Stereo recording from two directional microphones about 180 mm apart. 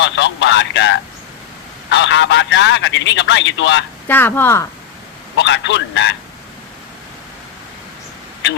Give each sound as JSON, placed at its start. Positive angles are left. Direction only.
{"t": 0.0, "sound": "a sound", "side_deg": 80}
{"t": 1.9, "sound": "a man's voice", "side_deg": 85}
{"t": 4.1, "sound": "speech", "side_deg": 10}
{"t": 5.4, "sound": "a man's voice", "side_deg": 80}